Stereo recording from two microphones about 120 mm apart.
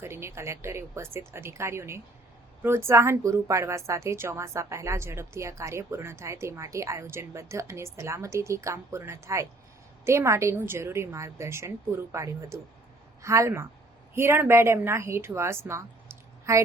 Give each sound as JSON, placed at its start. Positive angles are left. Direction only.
{"t": 0.0, "sound": "a woman's voice", "side_deg": -20}